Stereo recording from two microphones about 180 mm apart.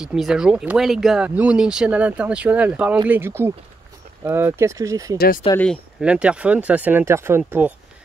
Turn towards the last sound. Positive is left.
turn(degrees=-10)  # may be behind; listen again after turning